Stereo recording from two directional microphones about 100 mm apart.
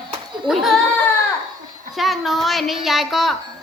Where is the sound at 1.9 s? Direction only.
Centre (ahead or behind).